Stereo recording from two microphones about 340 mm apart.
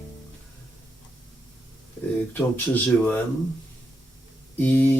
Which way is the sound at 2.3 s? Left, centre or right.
Centre.